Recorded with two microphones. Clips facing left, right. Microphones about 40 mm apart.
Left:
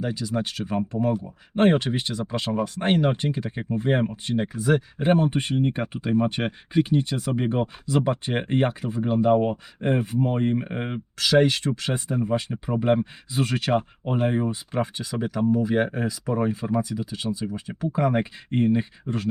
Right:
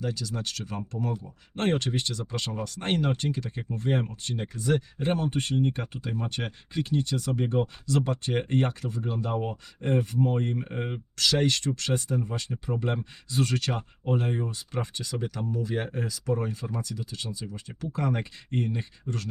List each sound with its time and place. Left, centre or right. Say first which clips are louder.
0.0 s speech: left 6 dB; left
12.0 s speech: left 6 dB; left